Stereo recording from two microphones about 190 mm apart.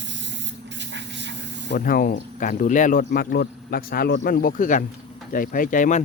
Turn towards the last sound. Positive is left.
turn(degrees=40)  # may be behind; listen again after turning